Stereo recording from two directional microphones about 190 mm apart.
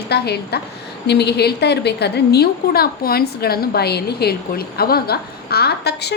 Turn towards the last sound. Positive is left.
turn(degrees=60)  # may be behind; listen again after turning